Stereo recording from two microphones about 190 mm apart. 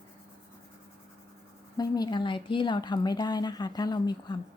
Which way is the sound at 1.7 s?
20° left (ahead or behind).